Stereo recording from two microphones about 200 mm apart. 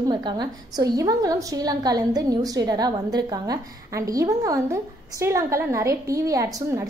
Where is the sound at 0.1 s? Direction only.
20° right (ahead or behind).